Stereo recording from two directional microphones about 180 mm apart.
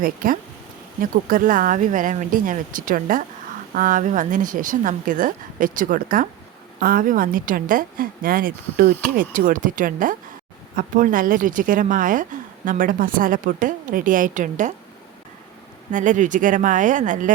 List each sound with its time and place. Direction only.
0.0 s a woman's voice: 50° right (ahead or behind)
15.9 s a woman's voice: 45° right (ahead or behind)